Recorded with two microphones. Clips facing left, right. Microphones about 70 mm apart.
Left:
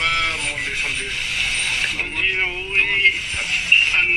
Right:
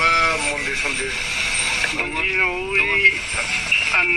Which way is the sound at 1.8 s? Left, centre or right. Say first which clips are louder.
Right 1 dB; right.